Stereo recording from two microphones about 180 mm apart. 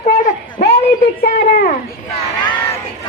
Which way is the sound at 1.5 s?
45° left (ahead or behind).